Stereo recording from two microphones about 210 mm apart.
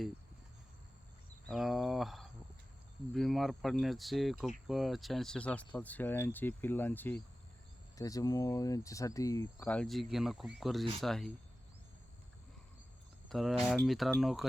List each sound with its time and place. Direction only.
1.5 s a sound: centre (ahead or behind)
3.1 s speech: centre (ahead or behind)
13.2 s speech: centre (ahead or behind)